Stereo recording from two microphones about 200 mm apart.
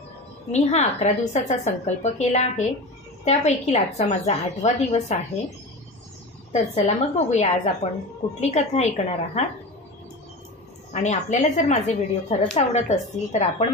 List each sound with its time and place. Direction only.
0.5 s a woman's voice: 35° left (ahead or behind)
6.5 s a woman's voice: 35° left (ahead or behind)
10.9 s a woman's voice: 35° left (ahead or behind)